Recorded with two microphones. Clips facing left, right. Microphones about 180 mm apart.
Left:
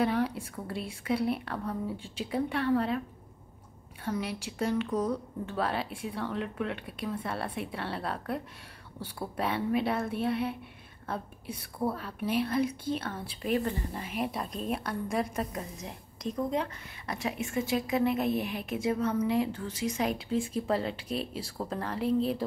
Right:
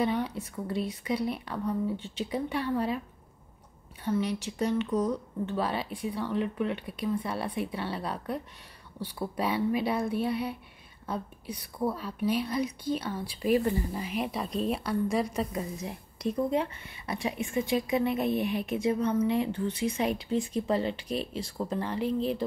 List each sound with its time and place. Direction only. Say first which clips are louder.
0.0 s a woman's voice: left 1 dB; 5° left (ahead or behind)
4.0 s a woman's voice: right 4 dB; 5° left (ahead or behind)
15.5 s a woman's voice: right 4 dB; 5° right (ahead or behind)